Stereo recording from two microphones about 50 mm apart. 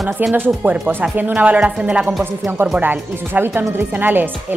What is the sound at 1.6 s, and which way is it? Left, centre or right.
Speech, centre.